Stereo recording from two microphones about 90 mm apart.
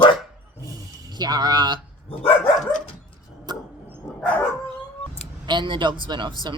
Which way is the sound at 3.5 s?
55° right (ahead or behind).